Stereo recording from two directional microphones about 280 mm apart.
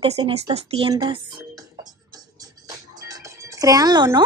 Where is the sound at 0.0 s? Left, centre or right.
Right.